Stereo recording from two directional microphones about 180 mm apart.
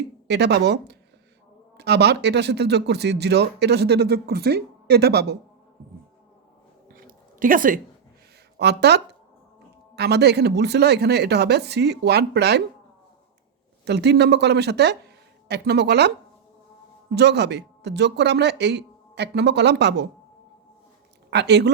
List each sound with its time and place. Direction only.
0.3 s speech: 65° right (ahead or behind)
6.8 s a sound: 50° right (ahead or behind)
8.5 s speech: 65° right (ahead or behind)
13.8 s speech: 70° right (ahead or behind)
21.2 s speech: 70° right (ahead or behind)